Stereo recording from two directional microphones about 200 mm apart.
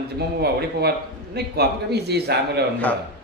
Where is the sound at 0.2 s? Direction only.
55° right (ahead or behind).